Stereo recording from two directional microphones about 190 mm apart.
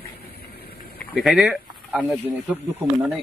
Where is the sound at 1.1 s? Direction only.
Centre (ahead or behind).